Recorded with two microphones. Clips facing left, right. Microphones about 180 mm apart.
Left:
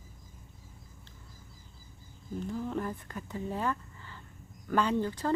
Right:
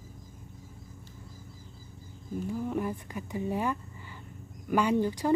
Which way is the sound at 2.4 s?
10° right (ahead or behind).